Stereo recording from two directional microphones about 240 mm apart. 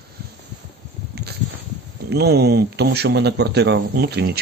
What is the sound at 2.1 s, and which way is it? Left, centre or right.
Speech, right.